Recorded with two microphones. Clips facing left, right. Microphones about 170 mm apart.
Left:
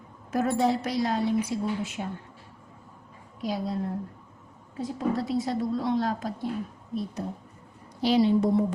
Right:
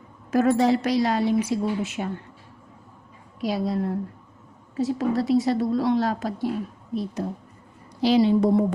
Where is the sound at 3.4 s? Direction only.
80° right.